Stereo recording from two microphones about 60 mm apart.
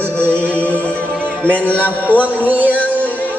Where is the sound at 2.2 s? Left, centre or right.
Right.